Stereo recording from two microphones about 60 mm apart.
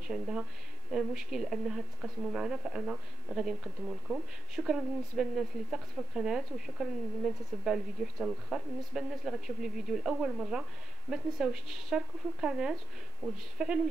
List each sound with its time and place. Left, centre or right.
0.1 s speech: centre